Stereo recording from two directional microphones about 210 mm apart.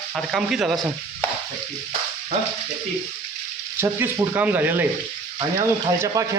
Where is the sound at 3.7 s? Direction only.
10° right (ahead or behind).